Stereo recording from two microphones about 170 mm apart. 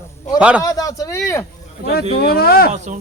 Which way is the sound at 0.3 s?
5° right (ahead or behind).